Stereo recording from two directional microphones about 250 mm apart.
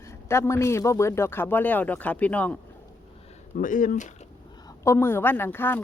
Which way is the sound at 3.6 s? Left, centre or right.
Left.